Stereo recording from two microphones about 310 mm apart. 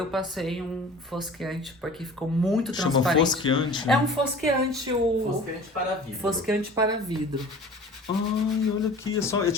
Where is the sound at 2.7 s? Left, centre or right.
Centre.